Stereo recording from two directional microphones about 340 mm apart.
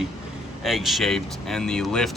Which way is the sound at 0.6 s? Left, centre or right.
Centre.